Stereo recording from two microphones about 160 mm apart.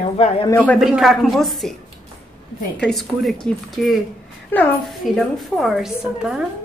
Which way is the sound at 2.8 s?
Centre (ahead or behind).